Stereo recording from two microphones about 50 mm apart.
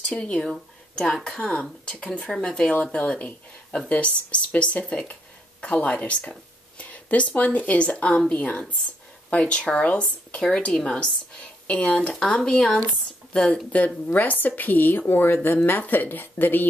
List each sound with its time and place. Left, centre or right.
0.1 s speech: left